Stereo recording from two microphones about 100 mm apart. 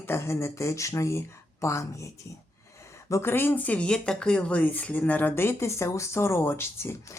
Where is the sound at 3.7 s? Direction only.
10° left (ahead or behind).